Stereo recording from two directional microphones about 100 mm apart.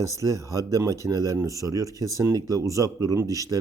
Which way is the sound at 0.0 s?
30° right (ahead or behind).